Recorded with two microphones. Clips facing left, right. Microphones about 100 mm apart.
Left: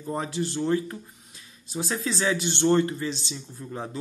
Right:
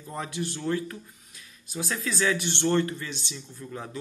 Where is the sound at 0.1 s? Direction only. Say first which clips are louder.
Left 4 dB; 30° left (ahead or behind).